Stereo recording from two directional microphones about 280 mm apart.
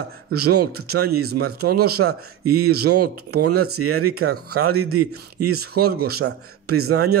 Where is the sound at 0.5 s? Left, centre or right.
Right.